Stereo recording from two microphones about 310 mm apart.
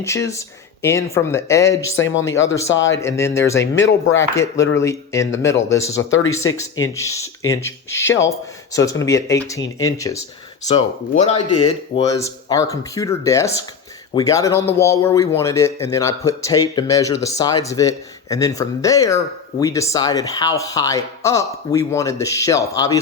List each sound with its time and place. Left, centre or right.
0.0 s speech: centre
2.0 s speech: left
3.2 s speech: centre
3.6 s speech: left
4.2 s speech: centre
6.0 s speech: left
6.3 s speech: centre
11.2 s speech: centre